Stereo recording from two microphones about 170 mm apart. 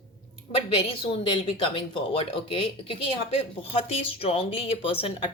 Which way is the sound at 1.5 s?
30° left (ahead or behind).